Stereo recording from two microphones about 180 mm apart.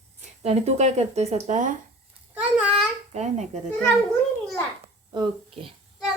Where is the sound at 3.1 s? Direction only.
40° right (ahead or behind).